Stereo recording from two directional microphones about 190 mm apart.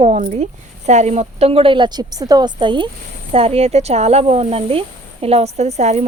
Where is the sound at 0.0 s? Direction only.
35° right (ahead or behind).